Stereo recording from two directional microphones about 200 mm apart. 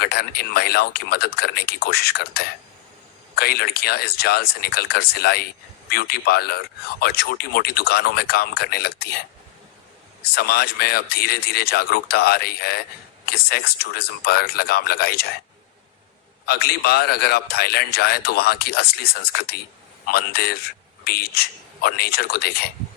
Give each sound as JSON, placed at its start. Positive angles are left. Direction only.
{"t": 0.0, "sound": "a man's voice", "side_deg": 50}
{"t": 10.3, "sound": "a man's voice", "side_deg": 50}
{"t": 16.5, "sound": "a man's voice", "side_deg": 50}